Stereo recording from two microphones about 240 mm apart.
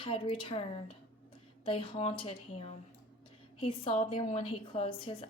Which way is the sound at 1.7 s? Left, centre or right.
Left.